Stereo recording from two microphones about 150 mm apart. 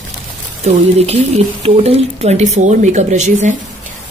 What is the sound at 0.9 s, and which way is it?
Speech, 45° right (ahead or behind).